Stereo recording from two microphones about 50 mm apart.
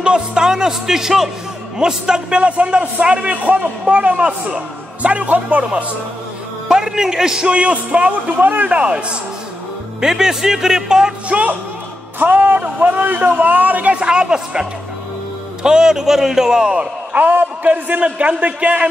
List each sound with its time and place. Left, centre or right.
0.0 s a man's voice: centre
6.7 s a man's voice: centre
11.2 s a man's voice: right
12.2 s a man's voice: right; by 16.8 s centre
17.1 s a man's voice: right